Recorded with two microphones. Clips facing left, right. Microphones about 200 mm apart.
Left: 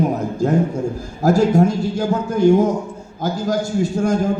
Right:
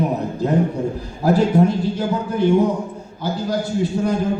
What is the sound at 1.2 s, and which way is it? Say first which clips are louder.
A man's voice: left 1 dB; 45° left (ahead or behind).